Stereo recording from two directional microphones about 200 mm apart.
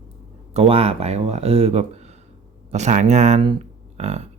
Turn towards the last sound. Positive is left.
turn(degrees=-35)  # may be behind; listen again after turning